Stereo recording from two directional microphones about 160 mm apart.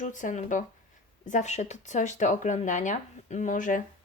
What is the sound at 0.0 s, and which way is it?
Speech, 50° left (ahead or behind).